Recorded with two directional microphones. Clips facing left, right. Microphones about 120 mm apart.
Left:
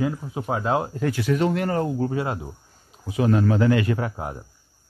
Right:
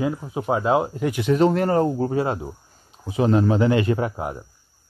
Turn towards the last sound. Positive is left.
turn(degrees=-20)  # may be behind; listen again after turning